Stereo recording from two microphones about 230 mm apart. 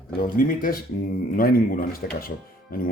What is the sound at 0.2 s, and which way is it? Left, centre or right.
Speech, left.